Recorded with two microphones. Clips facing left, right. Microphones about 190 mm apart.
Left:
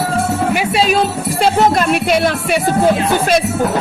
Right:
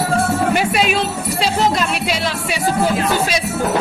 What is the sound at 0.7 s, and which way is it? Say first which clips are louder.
Music: left 4 dB; 35° left (ahead or behind).